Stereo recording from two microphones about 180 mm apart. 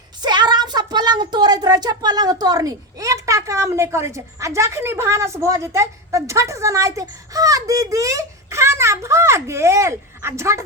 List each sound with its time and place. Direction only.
0.2 s a woman's voice: 25° right (ahead or behind)